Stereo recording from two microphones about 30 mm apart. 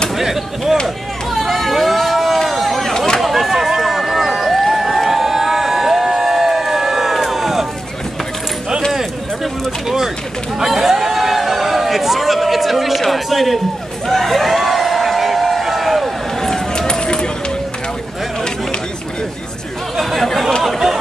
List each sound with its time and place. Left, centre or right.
0.1 s chop: centre
0.8 s run: centre
3.2 s a sound: centre
4.8 s crowd: centre
8.9 s a sound: centre
16.3 s run: centre
16.7 s run: left
20.0 s chatter: centre
20.6 s chatter: centre